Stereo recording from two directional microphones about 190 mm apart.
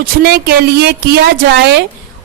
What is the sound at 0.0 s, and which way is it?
A woman's voice, 55° right (ahead or behind).